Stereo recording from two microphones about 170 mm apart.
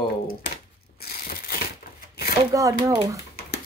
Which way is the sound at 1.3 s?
60° left (ahead or behind).